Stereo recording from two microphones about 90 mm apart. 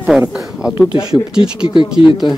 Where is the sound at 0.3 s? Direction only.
5° right (ahead or behind).